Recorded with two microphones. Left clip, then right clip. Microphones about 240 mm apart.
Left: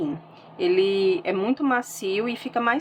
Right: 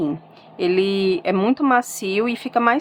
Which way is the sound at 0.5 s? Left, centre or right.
Right.